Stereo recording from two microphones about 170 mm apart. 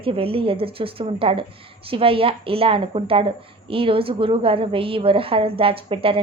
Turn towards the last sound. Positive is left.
turn(degrees=-30)  # may be behind; listen again after turning